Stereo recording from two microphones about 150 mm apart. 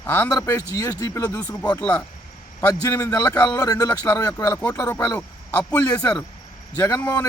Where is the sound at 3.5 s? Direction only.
25° left (ahead or behind).